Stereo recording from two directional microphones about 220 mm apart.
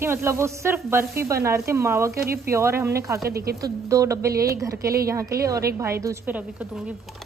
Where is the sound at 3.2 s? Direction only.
45° right (ahead or behind).